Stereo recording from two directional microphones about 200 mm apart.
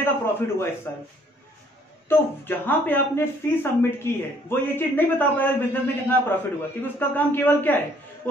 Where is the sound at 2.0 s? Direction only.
10° left (ahead or behind).